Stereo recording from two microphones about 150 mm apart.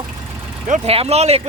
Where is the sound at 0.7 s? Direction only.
40° right (ahead or behind).